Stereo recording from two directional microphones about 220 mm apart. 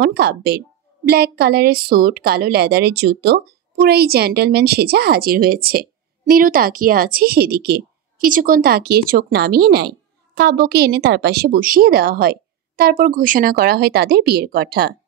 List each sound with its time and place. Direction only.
0.0 s a woman's voice: 45° right (ahead or behind)